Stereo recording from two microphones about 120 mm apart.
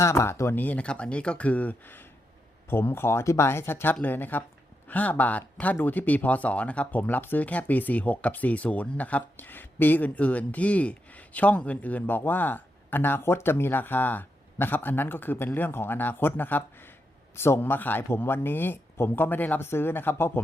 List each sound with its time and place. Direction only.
0.0 s speech: 25° left (ahead or behind)